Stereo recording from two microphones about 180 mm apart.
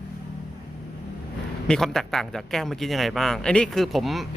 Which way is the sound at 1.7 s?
5° left (ahead or behind).